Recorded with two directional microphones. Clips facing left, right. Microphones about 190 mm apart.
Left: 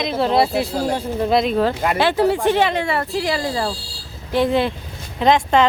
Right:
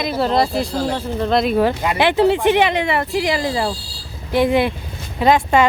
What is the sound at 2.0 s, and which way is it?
Speech, 20° right (ahead or behind).